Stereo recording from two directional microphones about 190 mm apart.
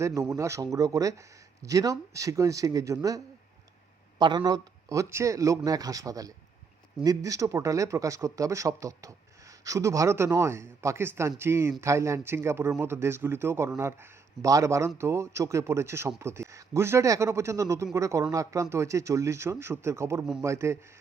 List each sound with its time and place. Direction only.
0.0 s speech: 15° right (ahead or behind)
4.2 s speech: 25° right (ahead or behind)